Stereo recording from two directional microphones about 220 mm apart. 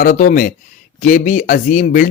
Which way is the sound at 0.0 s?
35° left (ahead or behind).